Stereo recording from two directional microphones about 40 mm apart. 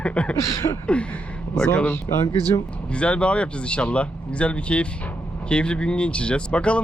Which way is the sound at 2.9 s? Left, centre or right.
Left.